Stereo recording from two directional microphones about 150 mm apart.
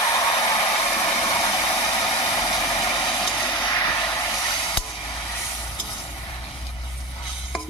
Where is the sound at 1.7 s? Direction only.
25° left (ahead or behind).